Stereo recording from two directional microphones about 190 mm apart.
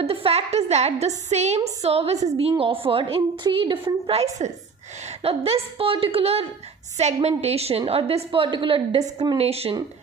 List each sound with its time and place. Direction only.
0.0 s a woman's voice: 30° right (ahead or behind)